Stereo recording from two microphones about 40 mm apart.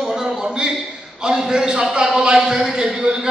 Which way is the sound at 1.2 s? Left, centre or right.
Centre.